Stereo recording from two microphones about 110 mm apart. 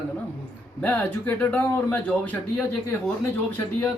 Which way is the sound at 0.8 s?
15° left (ahead or behind).